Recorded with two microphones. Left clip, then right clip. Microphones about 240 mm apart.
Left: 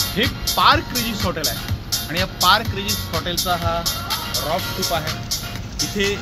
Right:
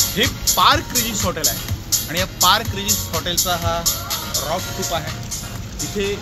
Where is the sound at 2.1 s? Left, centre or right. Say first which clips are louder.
Even; centre.